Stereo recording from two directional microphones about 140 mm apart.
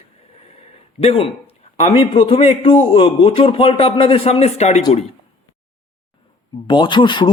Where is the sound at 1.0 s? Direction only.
40° left (ahead or behind).